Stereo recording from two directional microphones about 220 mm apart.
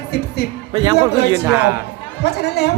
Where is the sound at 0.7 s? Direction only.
20° right (ahead or behind).